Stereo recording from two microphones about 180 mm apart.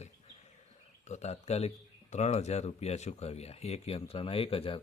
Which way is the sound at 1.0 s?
40° left (ahead or behind).